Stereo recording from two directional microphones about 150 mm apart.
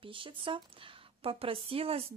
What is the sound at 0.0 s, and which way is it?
Speech, 35° right (ahead or behind).